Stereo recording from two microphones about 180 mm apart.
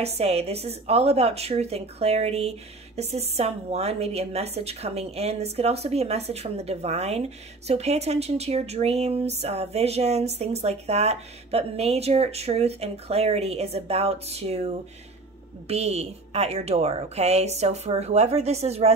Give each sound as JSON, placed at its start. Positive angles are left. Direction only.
{"t": 0.0, "sound": "a woman's voice", "side_deg": -35}